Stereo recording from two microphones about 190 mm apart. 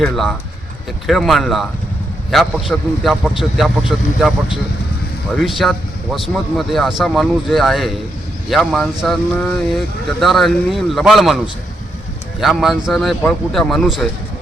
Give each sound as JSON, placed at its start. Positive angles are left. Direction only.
{"t": 0.0, "sound": "speech", "side_deg": 0}
{"t": 10.2, "sound": "speech", "side_deg": 0}
{"t": 12.4, "sound": "speech", "side_deg": 0}